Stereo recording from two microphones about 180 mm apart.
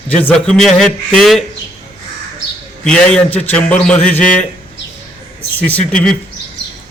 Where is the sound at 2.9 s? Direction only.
5° left (ahead or behind).